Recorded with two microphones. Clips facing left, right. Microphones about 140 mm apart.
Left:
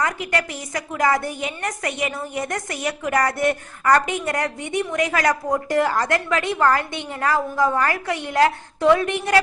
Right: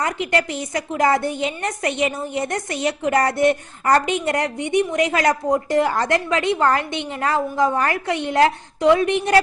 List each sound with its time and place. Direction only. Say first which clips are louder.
0.0 s a woman's voice: right 2 dB; 25° right (ahead or behind)